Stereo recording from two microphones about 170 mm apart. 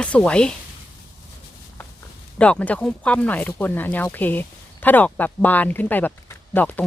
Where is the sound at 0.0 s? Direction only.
5° left (ahead or behind).